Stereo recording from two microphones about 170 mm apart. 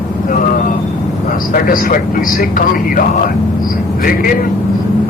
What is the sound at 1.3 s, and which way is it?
A man's voice, 55° left (ahead or behind).